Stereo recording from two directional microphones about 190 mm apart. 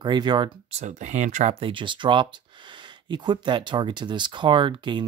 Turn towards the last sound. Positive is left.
turn(degrees=-25)  # may be behind; listen again after turning